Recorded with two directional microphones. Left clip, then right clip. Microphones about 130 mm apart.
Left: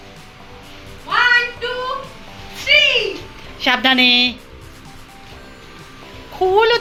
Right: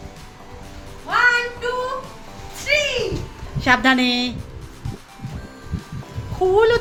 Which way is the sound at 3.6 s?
10° right (ahead or behind).